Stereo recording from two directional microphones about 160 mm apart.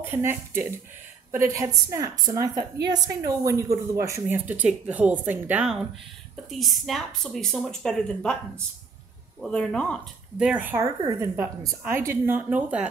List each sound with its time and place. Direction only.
0.0 s a woman's voice: 15° right (ahead or behind); by 8.4 s 5° left (ahead or behind)
9.4 s a woman's voice: 5° left (ahead or behind)
10.4 s a woman's voice: 10° right (ahead or behind)